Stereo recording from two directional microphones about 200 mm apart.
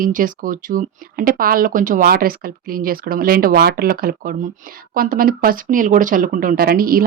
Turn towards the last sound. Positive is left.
turn(degrees=-45)  # may be behind; listen again after turning